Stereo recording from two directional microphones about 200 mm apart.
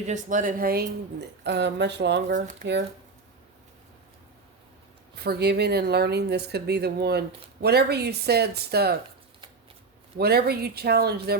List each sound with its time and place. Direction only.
0.0 s speech: 40° right (ahead or behind)
1.5 s speech: 60° right (ahead or behind)
5.1 s speech: 55° right (ahead or behind)
10.2 s speech: 50° right (ahead or behind)